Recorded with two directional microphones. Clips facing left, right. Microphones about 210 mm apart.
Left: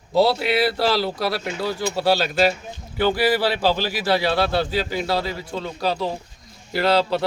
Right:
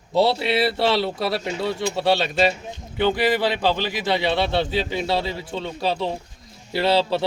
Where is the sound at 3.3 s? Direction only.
20° right (ahead or behind).